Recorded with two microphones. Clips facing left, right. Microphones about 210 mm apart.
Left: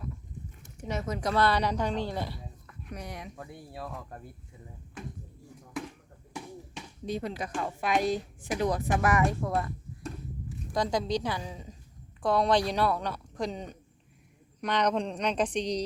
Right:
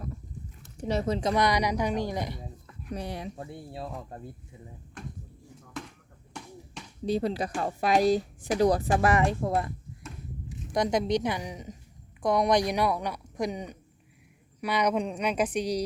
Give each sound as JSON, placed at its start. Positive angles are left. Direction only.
{"t": 0.8, "sound": "speech", "side_deg": -35}
{"t": 1.3, "sound": "speech", "side_deg": -15}
{"t": 2.9, "sound": "speech", "side_deg": -30}
{"t": 7.0, "sound": "a woman's voice", "side_deg": -35}